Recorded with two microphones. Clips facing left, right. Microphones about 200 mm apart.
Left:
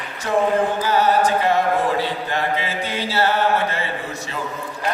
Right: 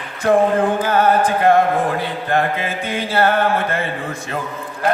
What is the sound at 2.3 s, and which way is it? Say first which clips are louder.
Mantra: right 4 dB; 55° right (ahead or behind).